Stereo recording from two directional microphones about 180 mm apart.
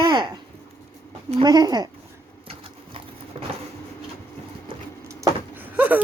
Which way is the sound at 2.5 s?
30° right (ahead or behind).